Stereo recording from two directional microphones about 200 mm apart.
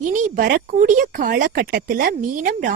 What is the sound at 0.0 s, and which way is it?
Speech, 40° right (ahead or behind).